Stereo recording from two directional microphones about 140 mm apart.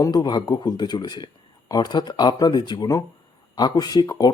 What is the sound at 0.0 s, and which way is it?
Speech, 30° left (ahead or behind).